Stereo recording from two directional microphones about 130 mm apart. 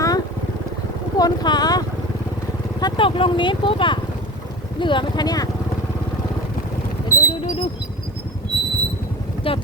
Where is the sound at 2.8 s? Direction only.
40° left (ahead or behind).